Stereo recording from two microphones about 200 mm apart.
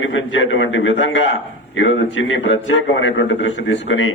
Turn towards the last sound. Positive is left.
turn(degrees=70)  # may be behind; listen again after turning